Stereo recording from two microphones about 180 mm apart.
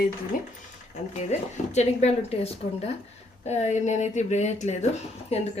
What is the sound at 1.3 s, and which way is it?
Speech, 35° left (ahead or behind).